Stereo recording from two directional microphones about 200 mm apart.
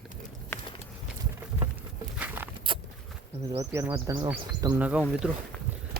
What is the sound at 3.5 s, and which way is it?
Speech, 15° right (ahead or behind).